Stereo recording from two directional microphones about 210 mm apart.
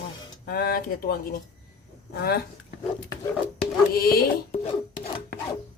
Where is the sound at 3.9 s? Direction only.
45° left (ahead or behind).